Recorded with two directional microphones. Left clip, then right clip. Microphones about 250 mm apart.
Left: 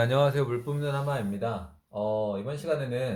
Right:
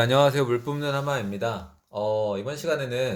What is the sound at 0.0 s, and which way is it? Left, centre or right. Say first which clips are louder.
Speech: right 5 dB; right.